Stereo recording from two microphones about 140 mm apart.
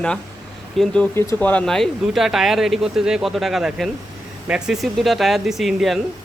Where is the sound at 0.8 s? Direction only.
Centre (ahead or behind).